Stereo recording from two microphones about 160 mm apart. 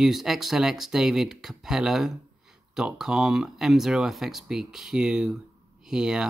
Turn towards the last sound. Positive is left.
turn(degrees=-5)  # may be behind; listen again after turning